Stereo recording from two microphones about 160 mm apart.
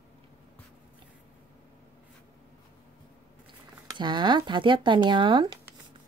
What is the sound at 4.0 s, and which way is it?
A woman's voice, 30° right (ahead or behind).